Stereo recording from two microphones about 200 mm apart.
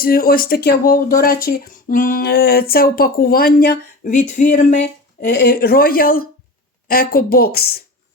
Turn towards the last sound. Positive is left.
turn(degrees=50)  # may be behind; listen again after turning